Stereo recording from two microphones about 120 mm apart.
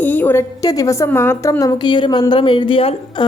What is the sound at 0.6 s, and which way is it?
A woman's voice, 30° left (ahead or behind).